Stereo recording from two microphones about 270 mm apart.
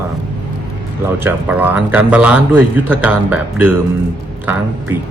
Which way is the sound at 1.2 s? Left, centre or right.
Centre.